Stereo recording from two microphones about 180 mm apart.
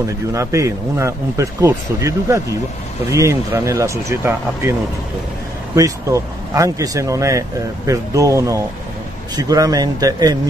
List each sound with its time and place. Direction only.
0.3 s speech: 20° right (ahead or behind)
5.8 s speech: 20° right (ahead or behind)